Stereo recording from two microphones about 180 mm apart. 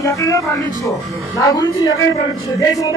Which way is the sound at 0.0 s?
15° left (ahead or behind).